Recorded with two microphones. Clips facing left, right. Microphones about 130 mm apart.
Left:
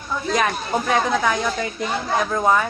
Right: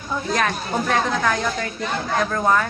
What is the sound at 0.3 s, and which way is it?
Speech, 5° left (ahead or behind).